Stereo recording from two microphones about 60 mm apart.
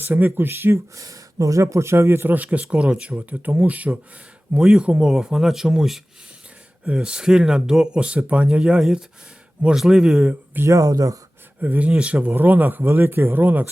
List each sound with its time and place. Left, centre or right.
0.0 s speech: right
0.9 s speech: right
2.3 s speech: right
10.7 s speech: right
11.6 s speech: right
12.3 s speech: right